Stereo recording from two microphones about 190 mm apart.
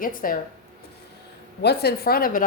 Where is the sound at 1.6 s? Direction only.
60° left (ahead or behind).